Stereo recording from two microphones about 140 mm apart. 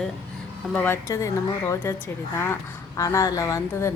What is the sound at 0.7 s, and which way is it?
A woman's voice, 15° left (ahead or behind).